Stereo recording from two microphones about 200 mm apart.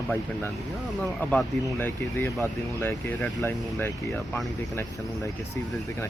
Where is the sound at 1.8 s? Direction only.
10° left (ahead or behind).